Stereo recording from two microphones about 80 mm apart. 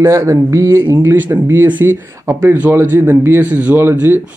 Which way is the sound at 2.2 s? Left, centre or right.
Right.